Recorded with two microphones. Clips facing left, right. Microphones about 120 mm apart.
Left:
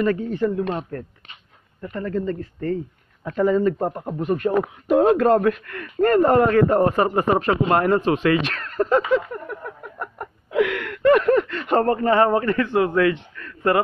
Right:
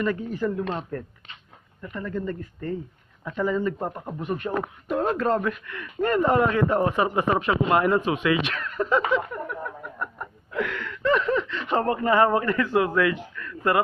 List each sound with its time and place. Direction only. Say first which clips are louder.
0.2 s a man's voice: left 4 dB; 25° left (ahead or behind)
1.8 s speech: left 5 dB; 35° left (ahead or behind)
4.8 s speech: left 8 dB; 90° left; by 9.2 s 40° left (ahead or behind)
10.5 s speech: left 8 dB; 80° left; by 11.8 s 55° left (ahead or behind)
11.9 s a man's voice: left 1 dB; 35° left (ahead or behind)